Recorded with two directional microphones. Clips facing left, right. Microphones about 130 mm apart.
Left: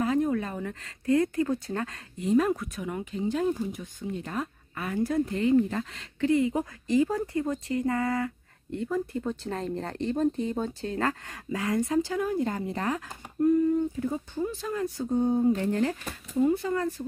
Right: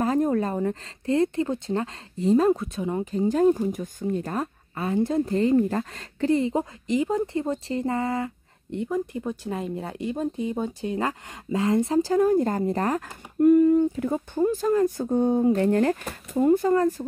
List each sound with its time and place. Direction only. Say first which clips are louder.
0.0 s speech: right 3 dB; 40° right (ahead or behind)
4.7 s speech: right 4 dB; 25° right (ahead or behind)
5.2 s speech: right 1 dB; 35° right (ahead or behind)
13.4 s speech: right 6 dB; 70° right (ahead or behind); by 15.0 s 45° right (ahead or behind)
15.0 s speech: left 1 dB; 65° right (ahead or behind); by 17.0 s 45° right (ahead or behind)